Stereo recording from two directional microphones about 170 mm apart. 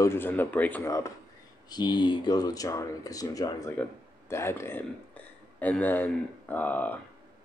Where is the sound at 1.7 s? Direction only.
25° left (ahead or behind).